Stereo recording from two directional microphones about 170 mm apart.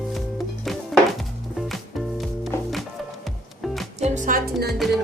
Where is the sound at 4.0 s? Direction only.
50° right (ahead or behind).